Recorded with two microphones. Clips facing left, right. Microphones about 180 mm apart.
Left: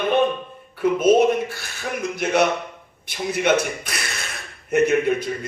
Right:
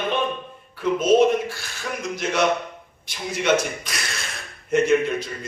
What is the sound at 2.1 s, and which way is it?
A man's voice, 55° left (ahead or behind).